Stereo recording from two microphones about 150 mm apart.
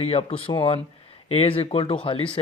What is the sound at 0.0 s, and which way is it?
Speech, 45° left (ahead or behind).